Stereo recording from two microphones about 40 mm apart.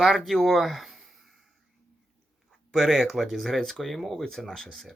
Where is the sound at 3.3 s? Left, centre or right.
Centre.